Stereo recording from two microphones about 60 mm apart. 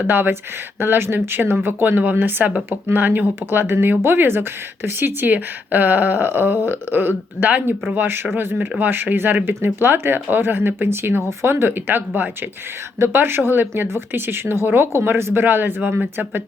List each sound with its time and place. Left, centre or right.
0.0 s speech: right